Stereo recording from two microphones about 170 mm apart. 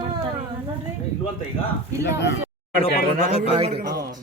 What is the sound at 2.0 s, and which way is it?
Speech, 90° left.